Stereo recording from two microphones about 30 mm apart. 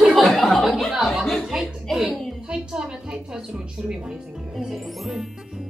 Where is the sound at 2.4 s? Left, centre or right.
Right.